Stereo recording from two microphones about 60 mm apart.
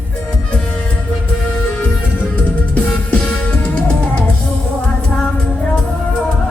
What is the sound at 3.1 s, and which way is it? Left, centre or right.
Music, centre.